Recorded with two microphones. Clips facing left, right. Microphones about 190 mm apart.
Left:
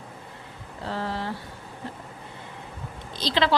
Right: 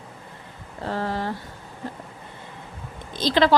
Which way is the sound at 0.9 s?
50° right (ahead or behind).